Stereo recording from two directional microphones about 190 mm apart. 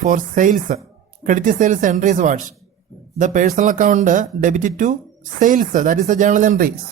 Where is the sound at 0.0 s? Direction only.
45° right (ahead or behind).